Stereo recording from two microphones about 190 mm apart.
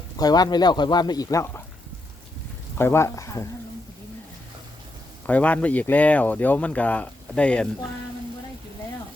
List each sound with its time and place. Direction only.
0.2 s speech: 20° left (ahead or behind)
2.7 s speech: 10° left (ahead or behind)
5.2 s speech: 5° left (ahead or behind)